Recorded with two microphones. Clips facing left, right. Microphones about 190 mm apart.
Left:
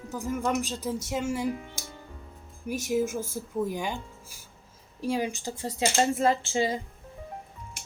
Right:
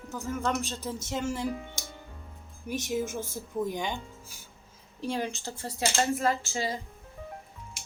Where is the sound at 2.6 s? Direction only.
10° left (ahead or behind).